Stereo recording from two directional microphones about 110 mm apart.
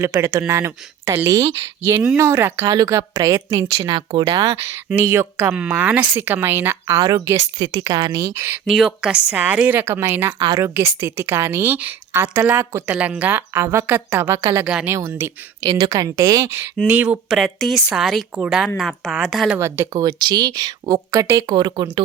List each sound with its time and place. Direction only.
0.0 s a woman's voice: 25° right (ahead or behind)
7.6 s a woman's voice: 40° right (ahead or behind); by 8.6 s 20° right (ahead or behind)
8.6 s a woman's voice: 5° right (ahead or behind); by 16.6 s 25° right (ahead or behind)
16.9 s speech: 15° right (ahead or behind)
19.5 s a woman's voice: 25° right (ahead or behind)
21.5 s speech: 45° right (ahead or behind)